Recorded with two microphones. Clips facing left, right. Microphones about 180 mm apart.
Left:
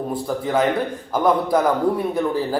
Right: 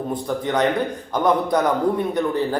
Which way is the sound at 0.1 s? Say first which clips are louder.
Left 1 dB; 5° left (ahead or behind).